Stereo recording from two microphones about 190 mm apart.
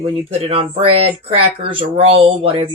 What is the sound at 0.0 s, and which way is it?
A woman's voice, 30° right (ahead or behind).